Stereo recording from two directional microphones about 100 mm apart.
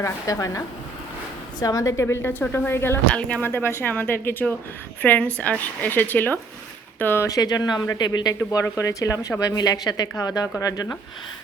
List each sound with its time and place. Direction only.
0.0 s speech: 35° left (ahead or behind)
3.1 s a woman's voice: 10° left (ahead or behind)
7.3 s speech: 40° left (ahead or behind)
8.4 s speech: 30° left (ahead or behind)